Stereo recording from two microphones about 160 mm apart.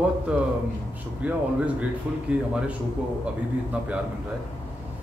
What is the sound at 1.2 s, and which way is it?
Speech, 10° right (ahead or behind).